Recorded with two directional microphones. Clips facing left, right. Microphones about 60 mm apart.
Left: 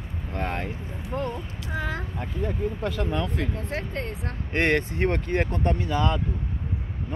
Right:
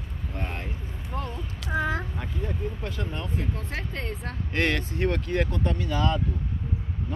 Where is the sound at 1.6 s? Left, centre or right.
Centre.